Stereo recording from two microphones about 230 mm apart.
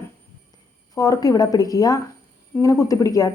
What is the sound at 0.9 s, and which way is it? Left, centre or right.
Speech, centre.